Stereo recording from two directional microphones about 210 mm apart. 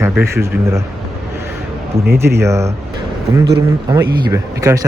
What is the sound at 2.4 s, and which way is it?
Speech, 15° right (ahead or behind).